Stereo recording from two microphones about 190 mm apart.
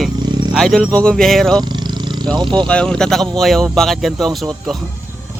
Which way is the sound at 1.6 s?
25° right (ahead or behind).